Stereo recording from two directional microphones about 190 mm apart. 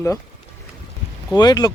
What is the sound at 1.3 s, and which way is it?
Speech, 20° left (ahead or behind).